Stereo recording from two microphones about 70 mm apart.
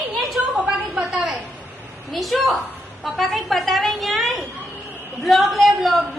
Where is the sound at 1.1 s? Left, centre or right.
Centre.